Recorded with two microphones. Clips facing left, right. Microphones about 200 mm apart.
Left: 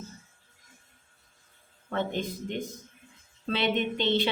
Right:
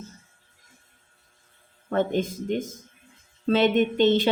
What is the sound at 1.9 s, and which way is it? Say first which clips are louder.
A woman's voice: right 6 dB; 45° right (ahead or behind).